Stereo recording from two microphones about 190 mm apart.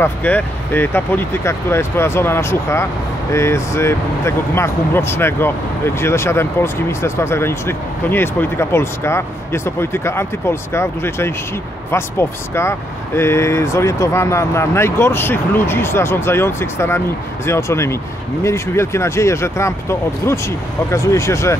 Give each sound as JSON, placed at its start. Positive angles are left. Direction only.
{"t": 0.0, "sound": "speech", "side_deg": 10}